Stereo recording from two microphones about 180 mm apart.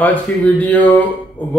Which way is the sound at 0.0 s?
10° left (ahead or behind).